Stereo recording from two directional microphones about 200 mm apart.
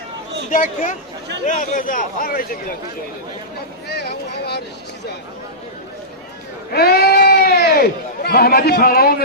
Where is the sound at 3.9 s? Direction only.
55° left (ahead or behind).